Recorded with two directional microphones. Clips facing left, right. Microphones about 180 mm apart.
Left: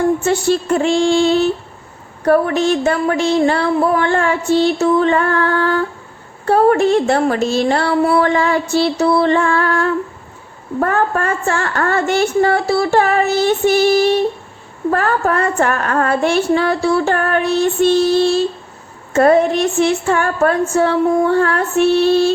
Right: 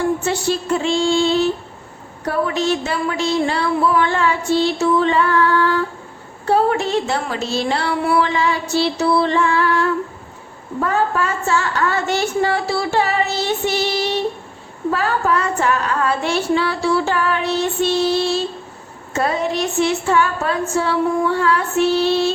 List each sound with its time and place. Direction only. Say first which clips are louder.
0.3 s a woman's voice: left 4 dB; 55° left (ahead or behind)